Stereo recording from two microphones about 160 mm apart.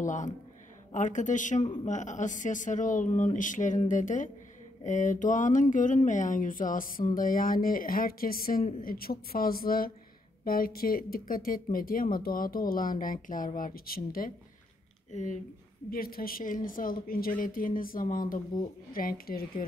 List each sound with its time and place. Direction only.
0.0 s a woman's voice: 50° left (ahead or behind)
15.0 s speech: 50° left (ahead or behind)
15.9 s speech: 65° left (ahead or behind)